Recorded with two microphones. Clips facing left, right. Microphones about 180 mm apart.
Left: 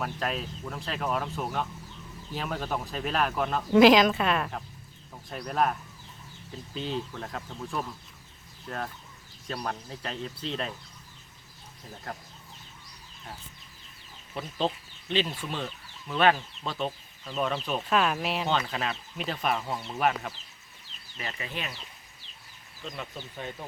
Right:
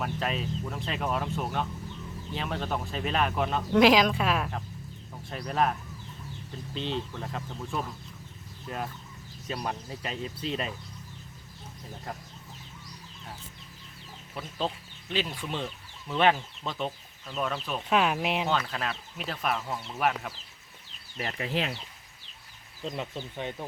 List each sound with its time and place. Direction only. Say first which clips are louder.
0.0 s speech: right 1 dB; centre (ahead or behind)
6.7 s speech: even; 5° left (ahead or behind)
12.1 s speech: even; centre (ahead or behind)
14.4 s speech: left 3 dB; 5° right (ahead or behind)
16.0 s speech: even; 20° right (ahead or behind)
17.3 s speech: left 2 dB; centre (ahead or behind)
17.8 s speech: right 2 dB; 15° right (ahead or behind)
18.4 s speech: left 1 dB; centre (ahead or behind)
21.2 s speech: right 6 dB; 65° right (ahead or behind); by 21.8 s 85° right
22.8 s speech: right 4 dB; 25° right (ahead or behind)